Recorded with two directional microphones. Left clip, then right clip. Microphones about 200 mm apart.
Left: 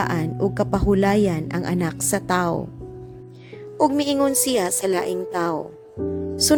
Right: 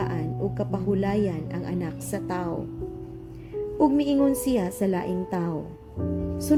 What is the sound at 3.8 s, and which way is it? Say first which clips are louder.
Speech: left 3 dB; 45° left (ahead or behind).